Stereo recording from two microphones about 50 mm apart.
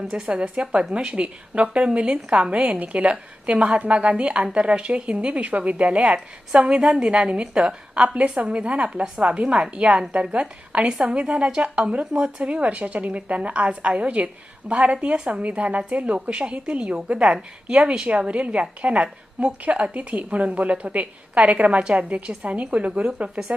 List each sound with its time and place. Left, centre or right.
0.1 s a woman's voice: centre
8.9 s a woman's voice: centre
9.2 s speech: right